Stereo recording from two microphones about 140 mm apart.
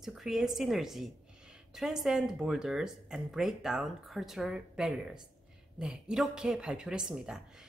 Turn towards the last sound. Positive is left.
turn(degrees=-5)  # may be behind; listen again after turning